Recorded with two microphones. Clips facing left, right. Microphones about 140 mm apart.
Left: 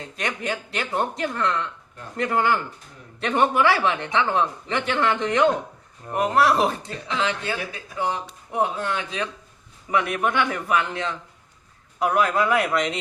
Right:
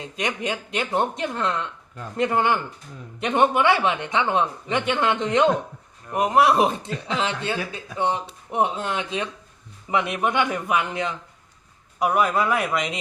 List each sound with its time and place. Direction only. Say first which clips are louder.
0.0 s a man's voice: right 2 dB; 20° right (ahead or behind)